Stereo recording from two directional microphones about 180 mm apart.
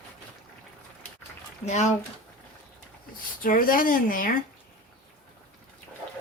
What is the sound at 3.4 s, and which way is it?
Speech, 50° left (ahead or behind).